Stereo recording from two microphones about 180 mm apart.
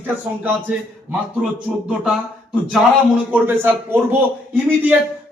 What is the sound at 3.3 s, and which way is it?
Speech, 10° right (ahead or behind).